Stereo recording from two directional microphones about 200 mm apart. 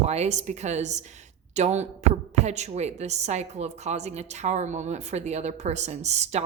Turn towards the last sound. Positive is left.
turn(degrees=-35)  # may be behind; listen again after turning